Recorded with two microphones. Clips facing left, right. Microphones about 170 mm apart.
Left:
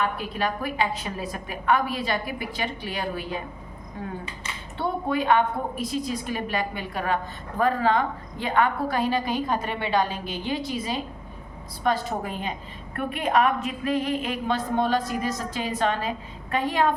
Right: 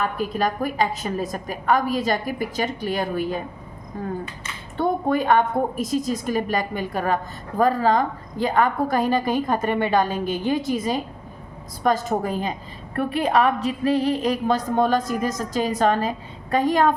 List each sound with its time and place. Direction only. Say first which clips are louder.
0.0 s a woman's voice: right 3 dB; 40° right (ahead or behind)
4.8 s a woman's voice: right 5 dB; 45° right (ahead or behind)